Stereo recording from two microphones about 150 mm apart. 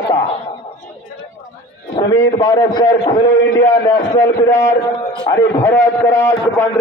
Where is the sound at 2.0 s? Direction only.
25° left (ahead or behind).